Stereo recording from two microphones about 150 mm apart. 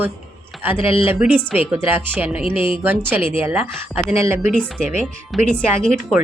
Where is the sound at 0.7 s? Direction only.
35° left (ahead or behind).